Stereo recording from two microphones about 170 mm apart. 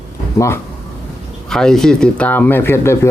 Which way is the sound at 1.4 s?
5° left (ahead or behind).